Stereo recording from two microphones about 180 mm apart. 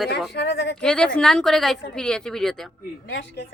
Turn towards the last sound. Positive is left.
turn(degrees=65)  # may be behind; listen again after turning